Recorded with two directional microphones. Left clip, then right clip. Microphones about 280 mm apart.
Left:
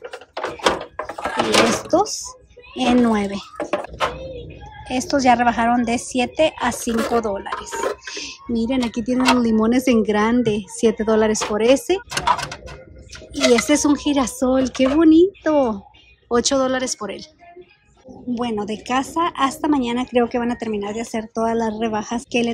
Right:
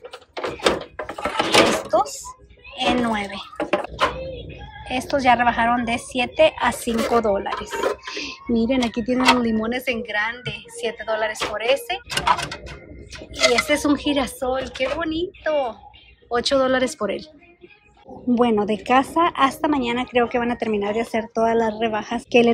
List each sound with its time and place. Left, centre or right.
0.4 s door: centre
1.8 s speech: left
3.5 s music: centre
4.8 s speech: centre
13.4 s speech: centre
18.3 s speech: centre